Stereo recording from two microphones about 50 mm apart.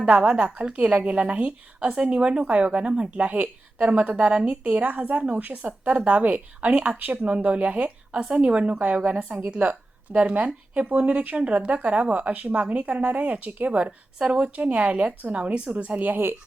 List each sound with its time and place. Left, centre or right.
0.0 s speech: right